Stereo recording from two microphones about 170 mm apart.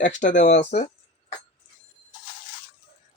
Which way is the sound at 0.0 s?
50° left (ahead or behind).